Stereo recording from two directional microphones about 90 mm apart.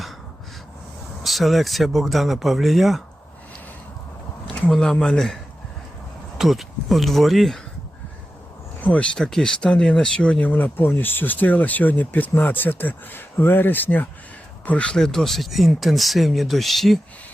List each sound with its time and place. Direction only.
1.2 s speech: centre (ahead or behind)
4.5 s speech: 10° left (ahead or behind)
8.8 s speech: 15° left (ahead or behind)